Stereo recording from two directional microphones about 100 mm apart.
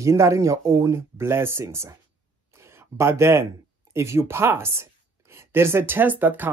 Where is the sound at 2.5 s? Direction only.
25° right (ahead or behind).